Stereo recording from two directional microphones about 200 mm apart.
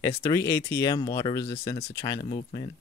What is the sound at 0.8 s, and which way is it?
Speech, 20° left (ahead or behind).